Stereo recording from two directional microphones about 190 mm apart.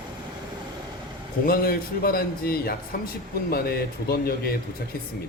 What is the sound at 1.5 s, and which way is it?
A man's voice, 50° left (ahead or behind).